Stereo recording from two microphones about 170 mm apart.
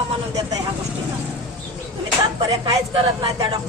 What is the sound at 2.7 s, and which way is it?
Speech, 25° right (ahead or behind).